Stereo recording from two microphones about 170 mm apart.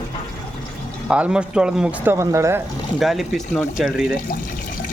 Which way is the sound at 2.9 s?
Centre (ahead or behind).